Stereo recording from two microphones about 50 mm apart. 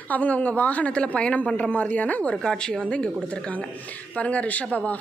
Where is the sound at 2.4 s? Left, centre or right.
Left.